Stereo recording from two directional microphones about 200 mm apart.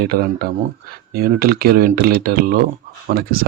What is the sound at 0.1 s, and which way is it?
Speech, 50° right (ahead or behind).